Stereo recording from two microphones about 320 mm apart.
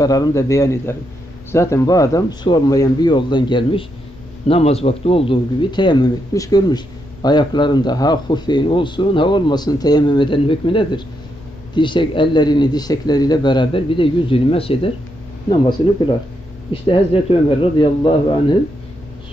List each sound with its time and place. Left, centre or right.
0.0 s a man's voice: centre
16.7 s a man's voice: centre